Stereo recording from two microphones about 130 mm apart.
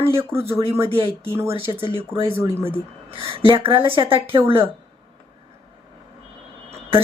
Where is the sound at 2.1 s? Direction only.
45° right (ahead or behind).